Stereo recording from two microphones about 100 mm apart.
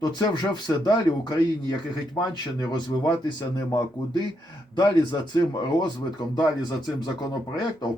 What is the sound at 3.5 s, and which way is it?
Speech, 35° left (ahead or behind).